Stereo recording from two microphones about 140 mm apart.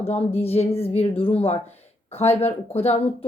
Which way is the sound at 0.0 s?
45° left (ahead or behind).